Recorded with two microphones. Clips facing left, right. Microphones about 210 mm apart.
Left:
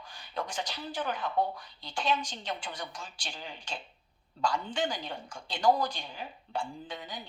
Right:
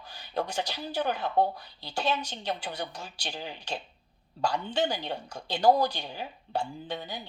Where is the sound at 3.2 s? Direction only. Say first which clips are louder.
Right 8 dB; 40° right (ahead or behind).